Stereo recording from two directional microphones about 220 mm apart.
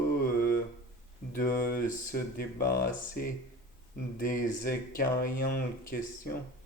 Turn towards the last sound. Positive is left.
turn(degrees=40)  # may be behind; listen again after turning